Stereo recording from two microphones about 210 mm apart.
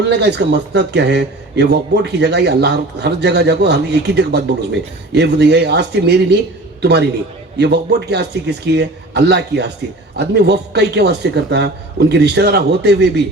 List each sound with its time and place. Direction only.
0.1 s a man's voice: 55° right (ahead or behind)